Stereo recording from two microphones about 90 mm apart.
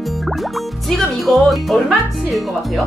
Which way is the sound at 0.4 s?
Centre (ahead or behind).